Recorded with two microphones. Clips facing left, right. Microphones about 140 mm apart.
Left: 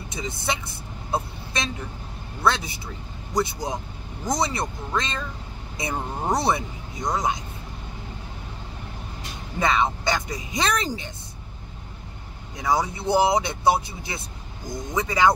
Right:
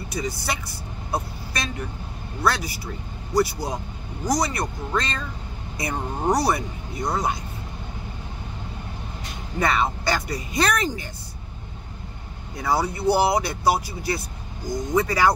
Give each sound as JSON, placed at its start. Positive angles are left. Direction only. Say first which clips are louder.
{"t": 0.1, "sound": "speech", "louder": "right 1 dB", "side_deg": 20}
{"t": 6.3, "sound": "speech", "louder": "left 1 dB", "side_deg": 20}
{"t": 9.6, "sound": "speech", "louder": "even", "side_deg": 20}
{"t": 10.8, "sound": "speech", "louder": "right 2 dB", "side_deg": 30}
{"t": 12.5, "sound": "speech", "louder": "even", "side_deg": 15}